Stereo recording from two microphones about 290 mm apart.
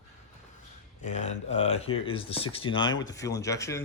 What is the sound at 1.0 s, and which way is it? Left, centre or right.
Speech, left.